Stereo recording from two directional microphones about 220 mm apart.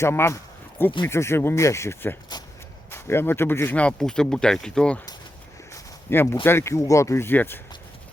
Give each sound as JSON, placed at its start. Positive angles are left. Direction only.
{"t": 0.0, "sound": "speech", "side_deg": 10}
{"t": 6.1, "sound": "speech", "side_deg": 10}